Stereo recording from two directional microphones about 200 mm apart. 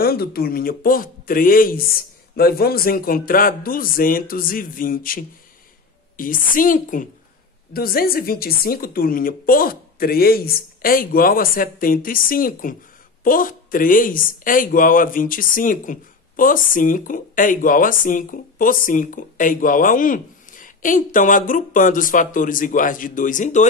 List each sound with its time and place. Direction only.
0.0 s speech: 50° left (ahead or behind)